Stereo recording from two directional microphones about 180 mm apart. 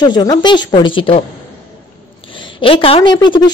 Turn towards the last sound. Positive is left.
turn(degrees=25)  # may be behind; listen again after turning